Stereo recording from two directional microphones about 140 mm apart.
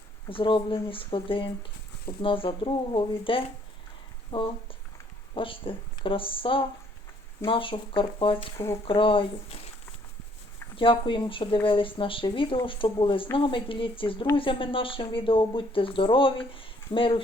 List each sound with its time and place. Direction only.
0.3 s speech: 40° left (ahead or behind)
8.5 s speech: 20° left (ahead or behind)
8.8 s speech: 40° left (ahead or behind)
10.8 s speech: 35° left (ahead or behind)